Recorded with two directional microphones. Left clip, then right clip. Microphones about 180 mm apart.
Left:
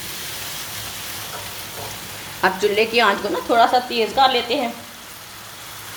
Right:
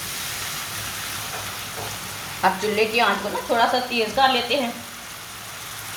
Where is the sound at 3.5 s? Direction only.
55° left (ahead or behind).